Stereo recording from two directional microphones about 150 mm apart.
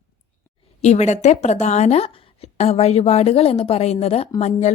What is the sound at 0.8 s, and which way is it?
A woman's voice, 50° left (ahead or behind).